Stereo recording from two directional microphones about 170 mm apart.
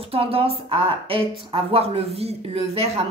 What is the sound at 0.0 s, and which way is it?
A woman's voice, 35° right (ahead or behind).